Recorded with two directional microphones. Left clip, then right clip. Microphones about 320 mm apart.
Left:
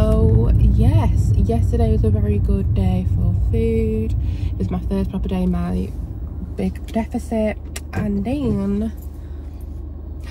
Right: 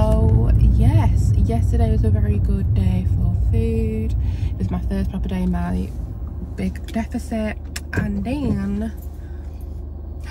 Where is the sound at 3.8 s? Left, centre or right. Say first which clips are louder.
Left 4 dB; right.